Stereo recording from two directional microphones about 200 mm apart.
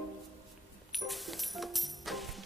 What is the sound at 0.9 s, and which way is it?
Music, centre (ahead or behind).